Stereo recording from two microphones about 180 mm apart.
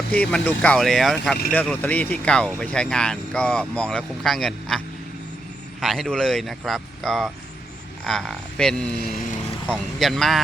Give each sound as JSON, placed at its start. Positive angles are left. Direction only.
{"t": 0.1, "sound": "speech", "side_deg": 5}
{"t": 5.8, "sound": "speech", "side_deg": 0}